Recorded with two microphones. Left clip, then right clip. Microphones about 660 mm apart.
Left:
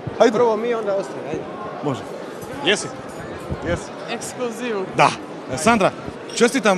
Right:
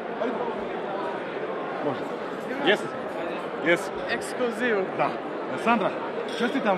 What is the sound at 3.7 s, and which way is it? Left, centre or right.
Speech, centre.